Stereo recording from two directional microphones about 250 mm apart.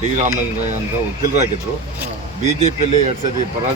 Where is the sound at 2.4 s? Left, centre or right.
Right.